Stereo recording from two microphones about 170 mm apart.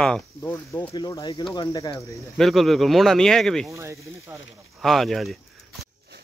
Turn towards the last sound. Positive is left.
turn(degrees=0)  # may be behind; listen again after turning